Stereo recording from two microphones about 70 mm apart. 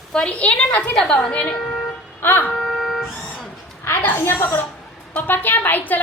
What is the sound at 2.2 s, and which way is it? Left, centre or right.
Speech, left.